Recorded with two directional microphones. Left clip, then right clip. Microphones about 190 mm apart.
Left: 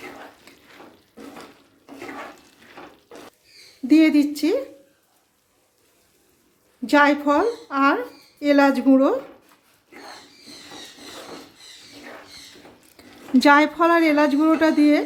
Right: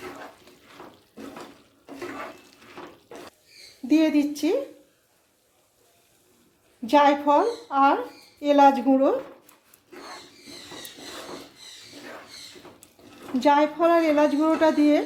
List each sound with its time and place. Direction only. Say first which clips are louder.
0.5 s water tap: left 4 dB; 30° left (ahead or behind)
3.8 s a woman's voice: left 5 dB; 30° left (ahead or behind)
6.9 s a woman's voice: left 1 dB; 25° left (ahead or behind)
13.0 s a sound: left 5 dB; 40° left (ahead or behind)
13.4 s a woman's voice: left 4 dB; 35° left (ahead or behind); by 15.0 s 20° left (ahead or behind)